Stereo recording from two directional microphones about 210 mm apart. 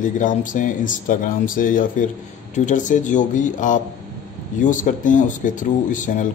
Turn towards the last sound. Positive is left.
turn(degrees=35)  # may be behind; listen again after turning